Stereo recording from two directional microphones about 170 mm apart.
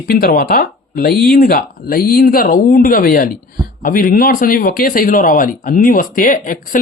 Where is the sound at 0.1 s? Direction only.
55° left (ahead or behind).